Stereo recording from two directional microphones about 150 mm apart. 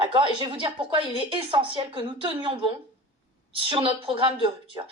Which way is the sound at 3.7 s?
35° right (ahead or behind).